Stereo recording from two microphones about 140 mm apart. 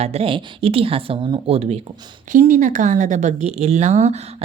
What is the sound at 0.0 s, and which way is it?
Speech, 45° right (ahead or behind).